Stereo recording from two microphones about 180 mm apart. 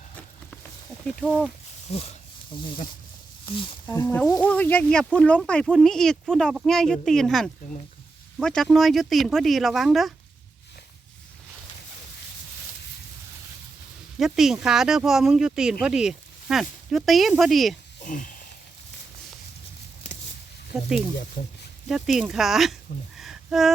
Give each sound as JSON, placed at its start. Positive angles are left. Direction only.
{"t": 1.9, "sound": "speech", "side_deg": 35}
{"t": 3.9, "sound": "speech", "side_deg": 15}
{"t": 14.2, "sound": "speech", "side_deg": 0}
{"t": 18.0, "sound": "a sound", "side_deg": 45}
{"t": 20.7, "sound": "speech", "side_deg": 0}
{"t": 21.4, "sound": "speech", "side_deg": 50}
{"t": 21.8, "sound": "speech", "side_deg": 0}